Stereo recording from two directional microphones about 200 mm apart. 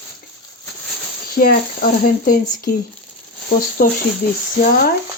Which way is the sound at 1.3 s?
45° left (ahead or behind).